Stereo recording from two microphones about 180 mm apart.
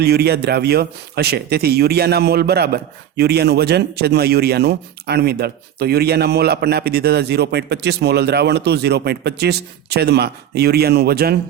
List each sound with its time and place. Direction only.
0.0 s speech: 65° right (ahead or behind)